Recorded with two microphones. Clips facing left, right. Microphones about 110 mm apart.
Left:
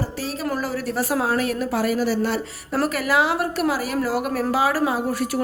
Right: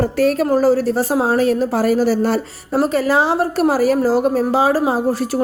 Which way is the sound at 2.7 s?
25° right (ahead or behind).